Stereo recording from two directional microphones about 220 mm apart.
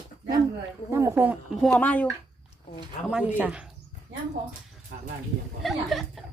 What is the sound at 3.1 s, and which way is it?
Speech, 5° right (ahead or behind).